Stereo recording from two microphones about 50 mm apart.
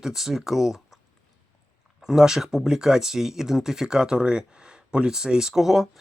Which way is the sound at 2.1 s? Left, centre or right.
Centre.